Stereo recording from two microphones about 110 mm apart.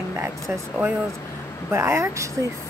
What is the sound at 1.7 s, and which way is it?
Speech, 25° right (ahead or behind).